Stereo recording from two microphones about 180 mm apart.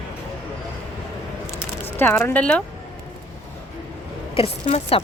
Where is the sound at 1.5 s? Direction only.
10° left (ahead or behind).